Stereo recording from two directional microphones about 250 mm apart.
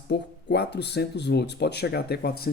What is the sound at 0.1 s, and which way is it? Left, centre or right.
Speech, left.